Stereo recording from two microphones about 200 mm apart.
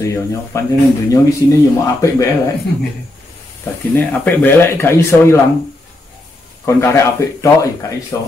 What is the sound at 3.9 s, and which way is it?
Speech, 10° left (ahead or behind).